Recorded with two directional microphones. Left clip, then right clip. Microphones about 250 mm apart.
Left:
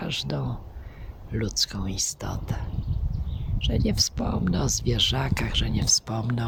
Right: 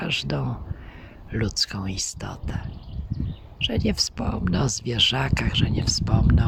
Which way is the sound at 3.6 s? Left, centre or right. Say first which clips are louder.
Right 2 dB; centre.